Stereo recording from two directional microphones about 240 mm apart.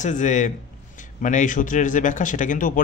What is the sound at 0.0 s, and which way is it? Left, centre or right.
Speech, left.